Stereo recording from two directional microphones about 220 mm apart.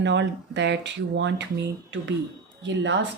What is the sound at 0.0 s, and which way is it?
Speech, 55° right (ahead or behind).